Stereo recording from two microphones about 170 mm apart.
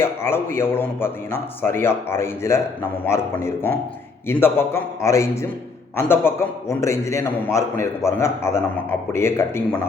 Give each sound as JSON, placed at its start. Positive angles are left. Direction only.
{"t": 0.0, "sound": "a man's voice", "side_deg": 15}